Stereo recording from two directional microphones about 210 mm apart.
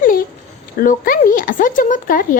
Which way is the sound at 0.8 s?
40° left (ahead or behind).